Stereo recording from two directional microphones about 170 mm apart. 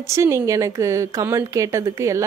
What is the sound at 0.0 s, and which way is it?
A woman's voice, 15° right (ahead or behind).